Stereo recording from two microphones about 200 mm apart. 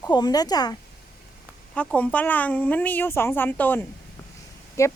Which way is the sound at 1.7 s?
5° left (ahead or behind).